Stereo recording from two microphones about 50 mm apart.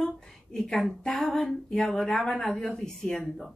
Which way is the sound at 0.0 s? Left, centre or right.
Centre.